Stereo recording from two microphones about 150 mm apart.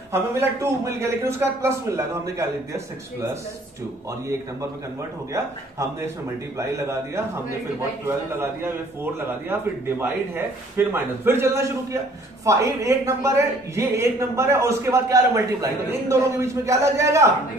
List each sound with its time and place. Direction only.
0.1 s a man's voice: 20° right (ahead or behind)
5.3 s a man's voice: 20° right (ahead or behind)
8.4 s a man's voice: 15° right (ahead or behind)